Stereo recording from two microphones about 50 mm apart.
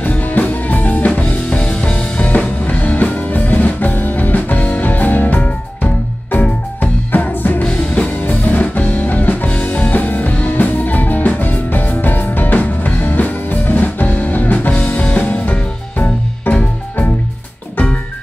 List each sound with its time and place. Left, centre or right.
0.0 s music: left
7.6 s music: left
14.7 s music: left